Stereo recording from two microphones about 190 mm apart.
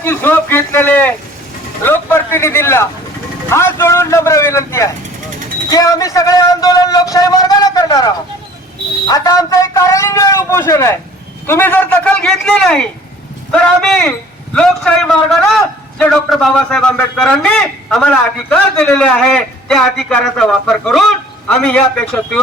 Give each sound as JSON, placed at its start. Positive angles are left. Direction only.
{"t": 0.0, "sound": "a man's voice", "side_deg": 10}